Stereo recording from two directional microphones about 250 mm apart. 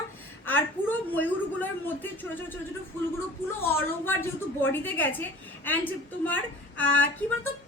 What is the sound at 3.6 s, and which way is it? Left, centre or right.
A child's voice, centre.